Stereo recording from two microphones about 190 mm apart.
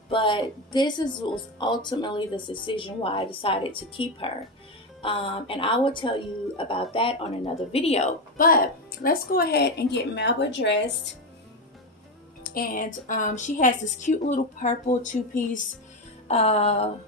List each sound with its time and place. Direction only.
0.1 s speech: 25° left (ahead or behind)
8.4 s speech: 50° left (ahead or behind); by 11.1 s 70° left (ahead or behind)
12.5 s a woman's voice: 45° left (ahead or behind)